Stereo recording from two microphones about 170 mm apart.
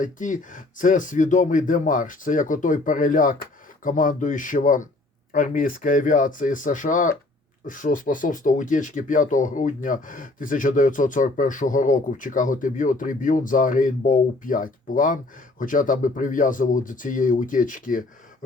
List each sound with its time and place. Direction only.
0.0 s speech: 50° left (ahead or behind)